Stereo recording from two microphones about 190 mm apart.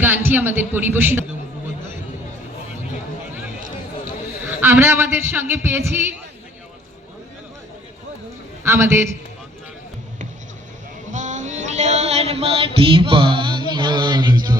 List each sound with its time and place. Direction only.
0.0 s a man's voice: 10° right (ahead or behind)
4.0 s a man's voice: 10° right (ahead or behind)
8.6 s a man's voice: 15° right (ahead or behind)
11.1 s a sound: 40° right (ahead or behind); by 14.5 s 20° right (ahead or behind)